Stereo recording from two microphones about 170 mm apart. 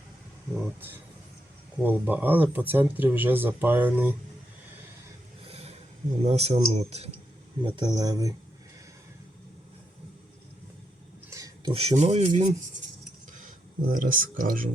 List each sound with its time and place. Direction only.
1.8 s speech: 10° right (ahead or behind)
5.5 s a sound: 35° right (ahead or behind)
6.2 s speech: 40° right (ahead or behind)
7.6 s speech: 25° right (ahead or behind)
11.3 s a sound: 20° right (ahead or behind)
11.7 s speech: 35° right (ahead or behind)
13.9 s speech: 55° right (ahead or behind)